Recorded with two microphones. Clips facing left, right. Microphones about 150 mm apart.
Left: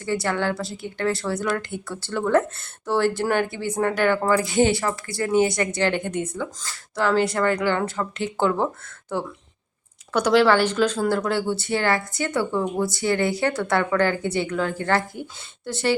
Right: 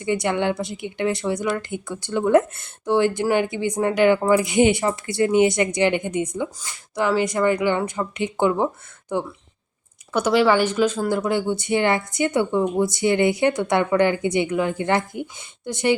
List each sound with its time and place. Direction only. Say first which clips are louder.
0.0 s a woman's voice: right 2 dB; 20° right (ahead or behind)